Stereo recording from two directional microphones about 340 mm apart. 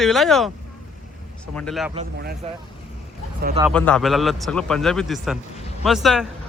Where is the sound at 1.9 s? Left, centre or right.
Right.